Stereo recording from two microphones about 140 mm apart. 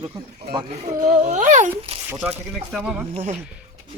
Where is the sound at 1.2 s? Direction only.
60° right (ahead or behind).